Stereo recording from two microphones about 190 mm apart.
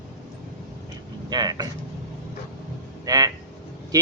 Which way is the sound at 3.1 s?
20° right (ahead or behind).